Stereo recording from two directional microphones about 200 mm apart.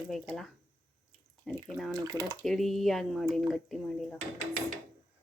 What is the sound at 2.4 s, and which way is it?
A woman's voice, centre (ahead or behind).